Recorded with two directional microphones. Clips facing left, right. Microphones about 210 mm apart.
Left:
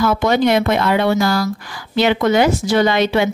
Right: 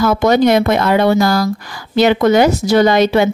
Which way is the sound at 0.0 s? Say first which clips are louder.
Right 3 dB; 40° right (ahead or behind).